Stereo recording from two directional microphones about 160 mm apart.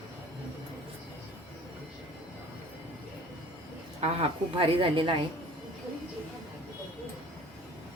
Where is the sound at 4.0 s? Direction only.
35° right (ahead or behind).